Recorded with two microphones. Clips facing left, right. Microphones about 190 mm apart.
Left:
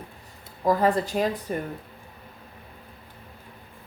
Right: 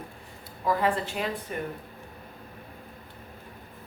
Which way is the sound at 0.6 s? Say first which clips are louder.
Left 4 dB; 40° left (ahead or behind).